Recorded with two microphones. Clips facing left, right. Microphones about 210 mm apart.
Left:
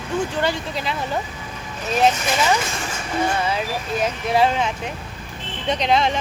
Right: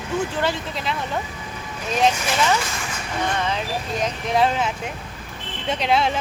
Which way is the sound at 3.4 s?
5° left (ahead or behind).